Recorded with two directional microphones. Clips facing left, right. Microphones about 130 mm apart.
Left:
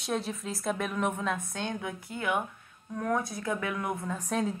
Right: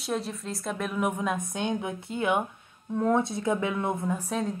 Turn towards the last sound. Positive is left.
turn(degrees=0)  # may be behind; listen again after turning